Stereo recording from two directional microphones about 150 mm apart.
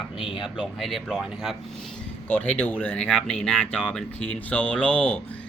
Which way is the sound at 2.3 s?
10° left (ahead or behind).